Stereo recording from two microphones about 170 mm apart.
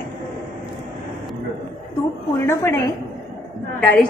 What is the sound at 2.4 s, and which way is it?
A woman's voice, 15° left (ahead or behind).